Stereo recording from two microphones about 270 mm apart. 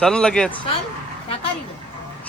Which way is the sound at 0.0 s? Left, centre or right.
Centre.